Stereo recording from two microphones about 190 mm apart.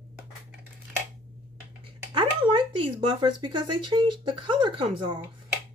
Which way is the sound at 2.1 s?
25° right (ahead or behind).